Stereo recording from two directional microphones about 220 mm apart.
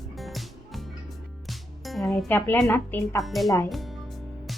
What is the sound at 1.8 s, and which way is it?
Speech, centre (ahead or behind).